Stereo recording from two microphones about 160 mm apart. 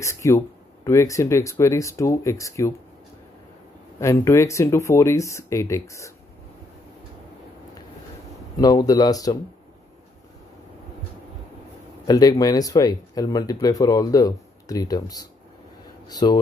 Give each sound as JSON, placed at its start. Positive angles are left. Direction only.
{"t": 0.0, "sound": "speech", "side_deg": 20}
{"t": 4.0, "sound": "speech", "side_deg": 20}
{"t": 8.5, "sound": "speech", "side_deg": 25}
{"t": 12.1, "sound": "speech", "side_deg": 25}